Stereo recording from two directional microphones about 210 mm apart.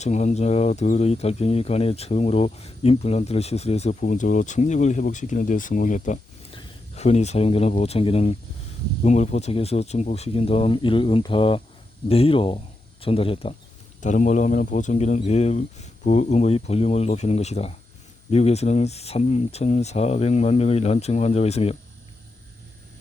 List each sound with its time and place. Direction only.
0.0 s speech: 35° left (ahead or behind)